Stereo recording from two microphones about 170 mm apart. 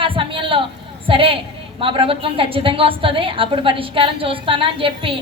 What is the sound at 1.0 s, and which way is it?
A woman's voice, 30° right (ahead or behind).